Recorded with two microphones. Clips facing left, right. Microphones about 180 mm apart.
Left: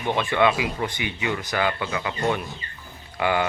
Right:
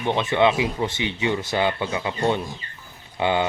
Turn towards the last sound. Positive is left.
turn(degrees=-20)  # may be behind; listen again after turning